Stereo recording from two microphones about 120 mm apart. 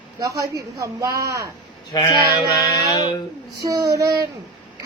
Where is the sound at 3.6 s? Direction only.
30° right (ahead or behind).